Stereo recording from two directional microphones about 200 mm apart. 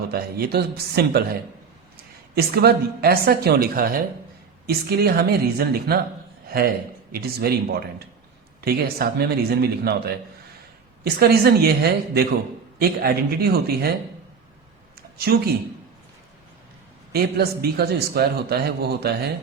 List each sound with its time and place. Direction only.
0.1 s a man's voice: 50° right (ahead or behind)
2.3 s a man's voice: 50° right (ahead or behind)
7.1 s a man's voice: 50° right (ahead or behind)
11.0 s a man's voice: 50° right (ahead or behind)
15.2 s a man's voice: 50° right (ahead or behind)
17.1 s a man's voice: 50° right (ahead or behind)